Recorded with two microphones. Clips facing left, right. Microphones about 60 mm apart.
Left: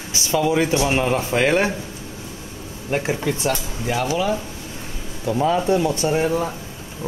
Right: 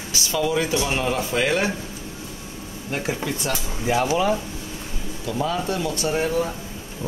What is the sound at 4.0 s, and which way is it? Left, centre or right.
Speech, right.